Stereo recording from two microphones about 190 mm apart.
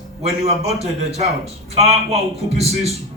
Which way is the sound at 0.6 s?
35° right (ahead or behind).